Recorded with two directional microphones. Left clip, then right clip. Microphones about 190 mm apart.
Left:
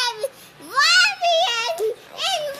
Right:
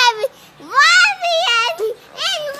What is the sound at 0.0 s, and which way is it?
Babbling, 20° right (ahead or behind).